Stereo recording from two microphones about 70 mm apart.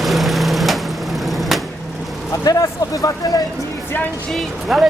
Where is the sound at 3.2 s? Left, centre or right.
Left.